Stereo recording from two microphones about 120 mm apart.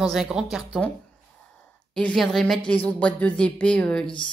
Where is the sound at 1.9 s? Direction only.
10° left (ahead or behind).